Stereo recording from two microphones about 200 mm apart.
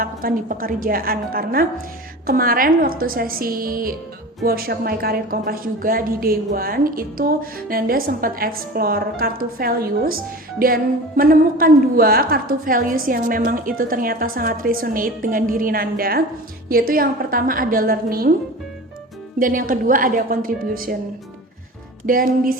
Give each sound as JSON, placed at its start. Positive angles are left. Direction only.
{"t": 0.0, "sound": "a woman's voice", "side_deg": -45}
{"t": 19.4, "sound": "a woman's voice", "side_deg": -45}
{"t": 22.0, "sound": "a woman's voice", "side_deg": -45}